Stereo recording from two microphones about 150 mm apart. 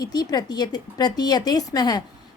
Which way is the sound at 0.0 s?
25° left (ahead or behind).